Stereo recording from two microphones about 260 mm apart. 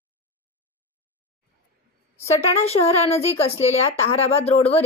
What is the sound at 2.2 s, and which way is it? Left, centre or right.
A woman's voice, left.